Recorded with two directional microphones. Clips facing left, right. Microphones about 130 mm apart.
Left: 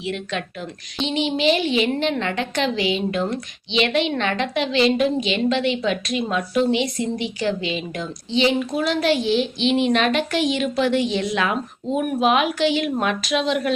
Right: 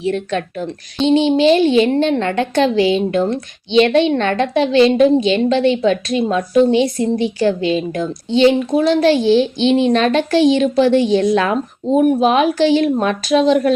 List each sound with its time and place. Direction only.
0.0 s a woman's voice: 40° right (ahead or behind)